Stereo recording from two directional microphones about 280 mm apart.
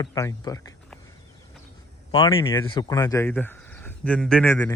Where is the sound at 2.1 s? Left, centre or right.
Centre.